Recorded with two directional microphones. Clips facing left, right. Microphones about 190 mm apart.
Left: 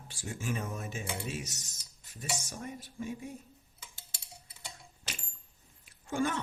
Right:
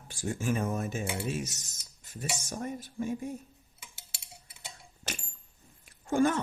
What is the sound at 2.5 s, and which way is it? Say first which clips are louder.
Speech: right 6 dB; 50° right (ahead or behind).